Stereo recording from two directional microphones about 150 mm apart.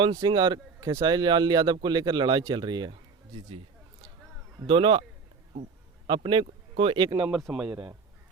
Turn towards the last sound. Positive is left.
turn(degrees=0)  # may be behind; listen again after turning